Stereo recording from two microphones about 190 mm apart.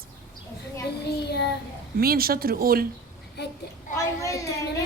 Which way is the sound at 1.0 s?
60° left (ahead or behind).